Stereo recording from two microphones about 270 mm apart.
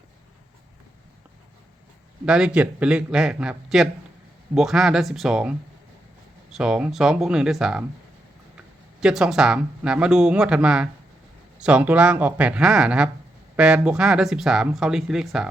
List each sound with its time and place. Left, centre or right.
2.2 s speech: centre
6.6 s speech: centre